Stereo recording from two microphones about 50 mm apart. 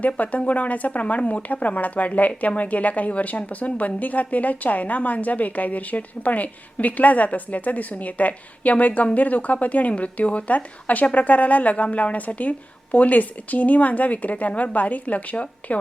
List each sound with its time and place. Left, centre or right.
0.2 s speech: left